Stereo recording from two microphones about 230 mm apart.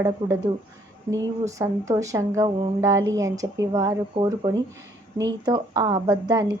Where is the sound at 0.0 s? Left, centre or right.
Centre.